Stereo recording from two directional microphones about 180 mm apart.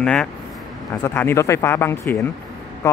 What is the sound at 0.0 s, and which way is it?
Speech, 5° left (ahead or behind).